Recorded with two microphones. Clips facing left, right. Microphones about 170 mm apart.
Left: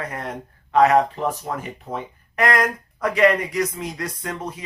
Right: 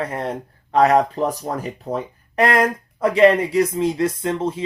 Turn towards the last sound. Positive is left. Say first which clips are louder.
# right 8 dB
turn(degrees=-25)  # may be behind; listen again after turning